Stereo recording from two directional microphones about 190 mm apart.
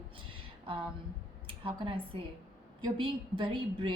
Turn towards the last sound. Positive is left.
turn(degrees=-25)  # may be behind; listen again after turning